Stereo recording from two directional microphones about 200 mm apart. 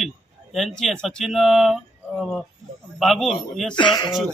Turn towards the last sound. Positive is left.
turn(degrees=25)  # may be behind; listen again after turning